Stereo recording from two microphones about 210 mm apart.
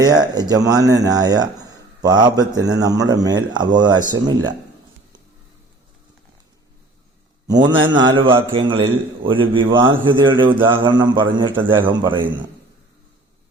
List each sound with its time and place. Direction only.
0.0 s speech: 20° right (ahead or behind)
7.4 s a man's voice: 20° right (ahead or behind)
11.7 s speech: 10° right (ahead or behind)
12.0 s a man's voice: 20° right (ahead or behind)